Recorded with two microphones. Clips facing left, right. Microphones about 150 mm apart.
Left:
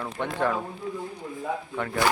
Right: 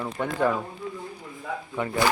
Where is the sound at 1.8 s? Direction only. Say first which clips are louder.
Right 5 dB; 10° right (ahead or behind).